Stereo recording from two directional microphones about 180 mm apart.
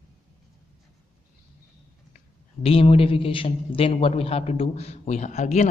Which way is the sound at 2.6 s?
30° left (ahead or behind).